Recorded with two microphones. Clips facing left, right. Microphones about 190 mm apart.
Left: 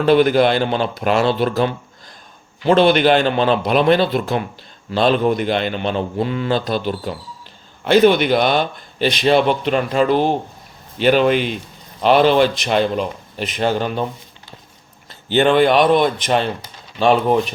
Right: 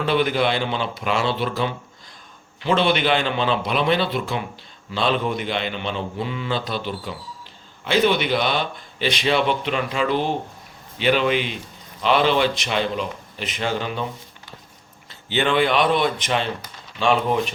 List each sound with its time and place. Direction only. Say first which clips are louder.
0.0 s speech: left 7 dB; 45° left (ahead or behind)
15.3 s speech: left 6 dB; 45° left (ahead or behind)